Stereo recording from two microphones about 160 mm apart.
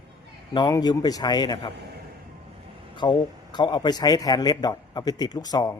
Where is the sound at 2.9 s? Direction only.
25° left (ahead or behind).